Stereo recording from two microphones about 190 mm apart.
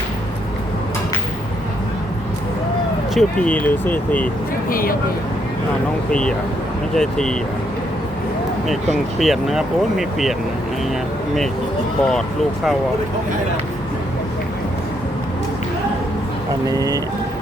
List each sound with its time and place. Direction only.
3.2 s speech: 5° left (ahead or behind)
4.7 s speech: 50° left (ahead or behind)
6.1 s speech: 5° left (ahead or behind)
9.1 s speech: centre (ahead or behind)
16.6 s speech: 20° right (ahead or behind)